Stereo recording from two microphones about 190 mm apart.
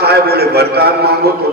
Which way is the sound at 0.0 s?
55° right (ahead or behind).